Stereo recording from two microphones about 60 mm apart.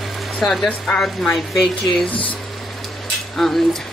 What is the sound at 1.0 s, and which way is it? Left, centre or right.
A woman's voice, centre.